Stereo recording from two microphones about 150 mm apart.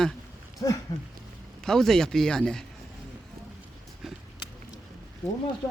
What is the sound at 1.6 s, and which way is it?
Speech, 5° left (ahead or behind).